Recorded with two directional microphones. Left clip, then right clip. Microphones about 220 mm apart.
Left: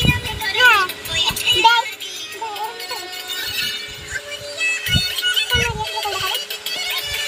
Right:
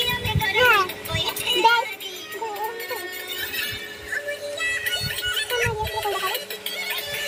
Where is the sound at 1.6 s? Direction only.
10° right (ahead or behind).